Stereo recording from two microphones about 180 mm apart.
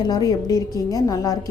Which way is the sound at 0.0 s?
20° left (ahead or behind).